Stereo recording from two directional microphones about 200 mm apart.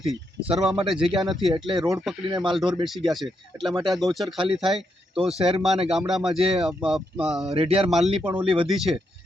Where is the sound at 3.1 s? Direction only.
Centre (ahead or behind).